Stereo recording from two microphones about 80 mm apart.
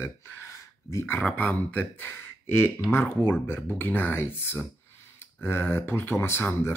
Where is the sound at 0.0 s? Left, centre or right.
Left.